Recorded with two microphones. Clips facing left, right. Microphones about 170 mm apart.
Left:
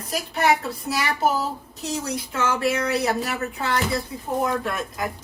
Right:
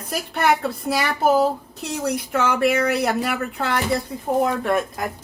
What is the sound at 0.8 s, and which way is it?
A woman's voice, 55° right (ahead or behind).